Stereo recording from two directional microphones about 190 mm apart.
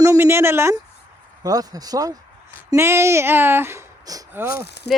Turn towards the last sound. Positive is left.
turn(degrees=60)  # may be behind; listen again after turning